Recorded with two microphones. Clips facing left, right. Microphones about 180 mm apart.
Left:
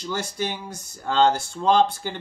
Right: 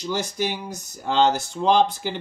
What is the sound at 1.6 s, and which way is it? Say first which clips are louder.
Speech: even; 15° right (ahead or behind).